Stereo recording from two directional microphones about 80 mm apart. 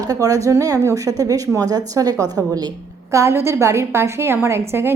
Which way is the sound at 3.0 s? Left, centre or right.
Right.